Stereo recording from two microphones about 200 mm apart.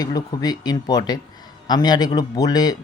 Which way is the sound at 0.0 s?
20° left (ahead or behind).